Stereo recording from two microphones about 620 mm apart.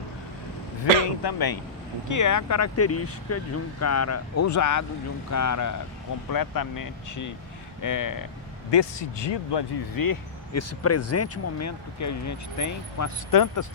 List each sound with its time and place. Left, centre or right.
1.2 s speech: left
8.7 s speech: left